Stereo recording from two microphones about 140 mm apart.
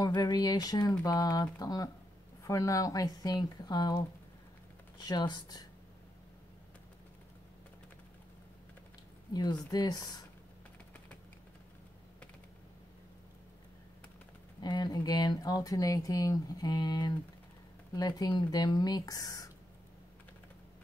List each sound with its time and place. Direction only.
0.0 s speech: 30° left (ahead or behind)
9.3 s speech: 30° left (ahead or behind)
14.6 s speech: 30° left (ahead or behind)